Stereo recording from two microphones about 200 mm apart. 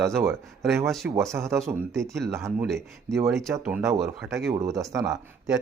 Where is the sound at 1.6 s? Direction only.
Centre (ahead or behind).